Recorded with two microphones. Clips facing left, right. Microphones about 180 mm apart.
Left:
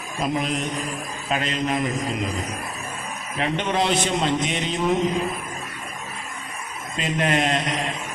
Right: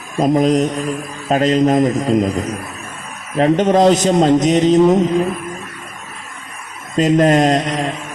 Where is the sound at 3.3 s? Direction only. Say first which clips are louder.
Right 12 dB; 40° right (ahead or behind).